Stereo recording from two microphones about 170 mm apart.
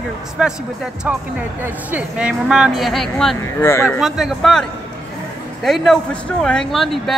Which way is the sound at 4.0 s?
Centre (ahead or behind).